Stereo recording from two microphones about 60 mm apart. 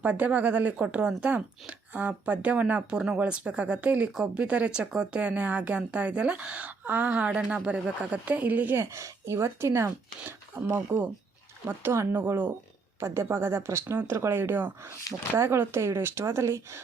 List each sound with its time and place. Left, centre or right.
0.0 s a woman's voice: right
8.7 s speech: right
13.0 s speech: right